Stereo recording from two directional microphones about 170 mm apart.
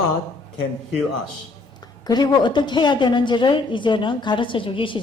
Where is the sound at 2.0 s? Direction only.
25° left (ahead or behind).